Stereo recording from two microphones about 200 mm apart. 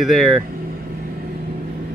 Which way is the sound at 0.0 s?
Centre (ahead or behind).